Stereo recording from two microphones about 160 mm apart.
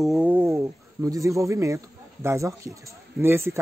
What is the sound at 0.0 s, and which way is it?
Speech, 5° right (ahead or behind).